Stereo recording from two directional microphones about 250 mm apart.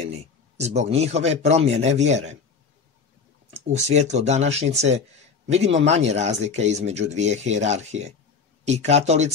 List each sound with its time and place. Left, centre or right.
0.0 s a sound: right
0.9 s speech: right
3.5 s speech: right